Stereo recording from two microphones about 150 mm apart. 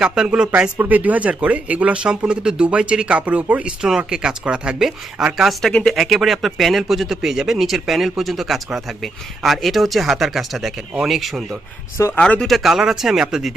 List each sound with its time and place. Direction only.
0.0 s speech: 5° right (ahead or behind)
11.9 s speech: 20° left (ahead or behind)
12.2 s speech: 5° left (ahead or behind)